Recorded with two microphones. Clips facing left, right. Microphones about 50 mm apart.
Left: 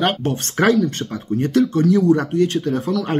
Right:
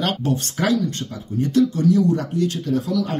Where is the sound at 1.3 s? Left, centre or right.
Left.